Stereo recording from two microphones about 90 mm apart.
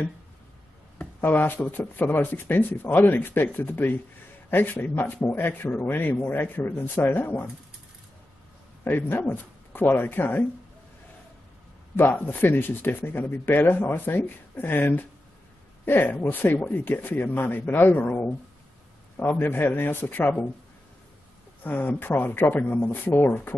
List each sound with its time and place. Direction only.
1.2 s a man's voice: 20° left (ahead or behind)
8.8 s speech: 20° left (ahead or behind)
12.0 s speech: 25° left (ahead or behind)
21.6 s speech: 20° left (ahead or behind)